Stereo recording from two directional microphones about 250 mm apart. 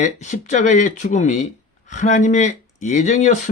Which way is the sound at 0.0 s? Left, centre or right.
Left.